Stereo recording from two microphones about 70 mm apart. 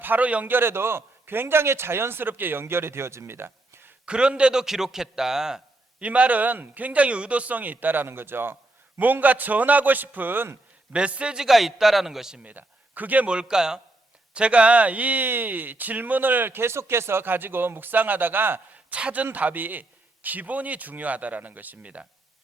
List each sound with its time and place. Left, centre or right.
0.0 s a man's voice: right
4.0 s a man's voice: centre
6.0 s speech: centre
10.9 s a man's voice: centre
12.5 s a man's voice: right